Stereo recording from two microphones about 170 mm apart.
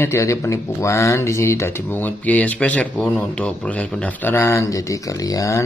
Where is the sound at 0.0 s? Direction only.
15° left (ahead or behind).